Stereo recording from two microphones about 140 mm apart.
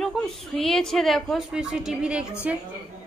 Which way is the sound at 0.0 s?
Centre (ahead or behind).